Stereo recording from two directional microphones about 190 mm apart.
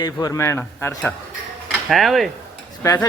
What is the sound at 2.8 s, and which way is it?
Cutlery, 15° left (ahead or behind).